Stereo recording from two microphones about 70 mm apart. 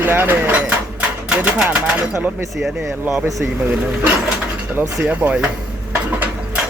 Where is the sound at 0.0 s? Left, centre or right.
Right.